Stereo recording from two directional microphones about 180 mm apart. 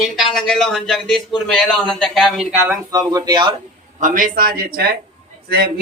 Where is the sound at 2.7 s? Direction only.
20° right (ahead or behind).